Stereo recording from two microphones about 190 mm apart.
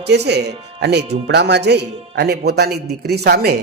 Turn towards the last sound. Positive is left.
turn(degrees=-55)  # may be behind; listen again after turning